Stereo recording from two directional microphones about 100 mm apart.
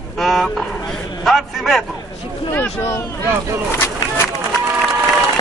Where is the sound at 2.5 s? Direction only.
20° left (ahead or behind).